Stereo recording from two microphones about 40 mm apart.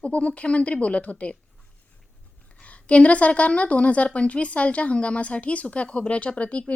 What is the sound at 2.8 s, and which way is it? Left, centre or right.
Speech, left.